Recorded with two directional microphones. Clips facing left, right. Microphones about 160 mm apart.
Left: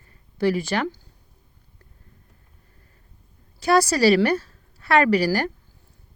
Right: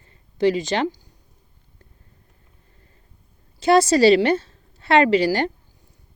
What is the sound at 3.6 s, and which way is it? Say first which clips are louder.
A woman's voice: right 3 dB; 25° right (ahead or behind).